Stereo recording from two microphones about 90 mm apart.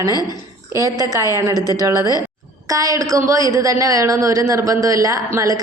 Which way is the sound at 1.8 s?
40° right (ahead or behind).